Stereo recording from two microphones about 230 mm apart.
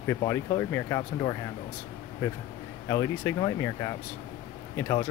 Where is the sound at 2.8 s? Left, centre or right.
Centre.